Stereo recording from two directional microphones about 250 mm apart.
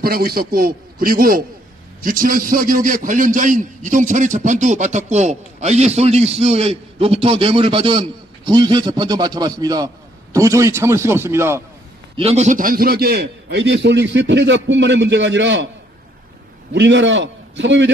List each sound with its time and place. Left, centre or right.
0.0 s a man's voice: right; by 11.6 s centre
12.2 s a man's voice: right
16.7 s a man's voice: right